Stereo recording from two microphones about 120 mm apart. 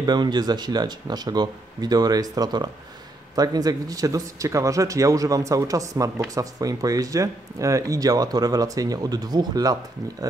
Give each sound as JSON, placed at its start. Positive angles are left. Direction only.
{"t": 0.0, "sound": "speech", "side_deg": -35}